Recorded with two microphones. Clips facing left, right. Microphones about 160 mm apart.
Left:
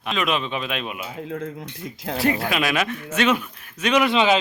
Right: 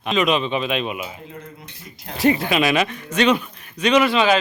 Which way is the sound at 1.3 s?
90° left.